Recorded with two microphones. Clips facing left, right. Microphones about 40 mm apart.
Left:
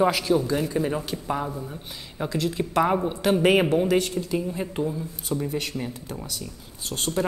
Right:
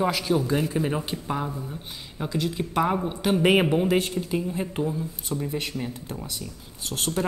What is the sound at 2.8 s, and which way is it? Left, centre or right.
Speech, centre.